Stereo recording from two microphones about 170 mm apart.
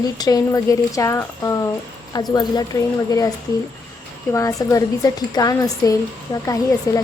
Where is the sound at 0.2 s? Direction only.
20° left (ahead or behind).